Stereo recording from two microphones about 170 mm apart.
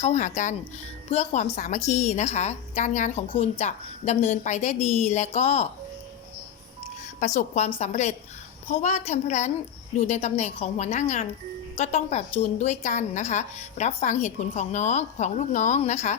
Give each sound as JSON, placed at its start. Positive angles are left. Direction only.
{"t": 0.0, "sound": "a woman's voice", "side_deg": 45}
{"t": 7.3, "sound": "a woman's voice", "side_deg": 40}